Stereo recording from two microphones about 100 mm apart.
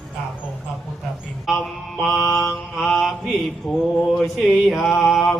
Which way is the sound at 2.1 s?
30° left (ahead or behind).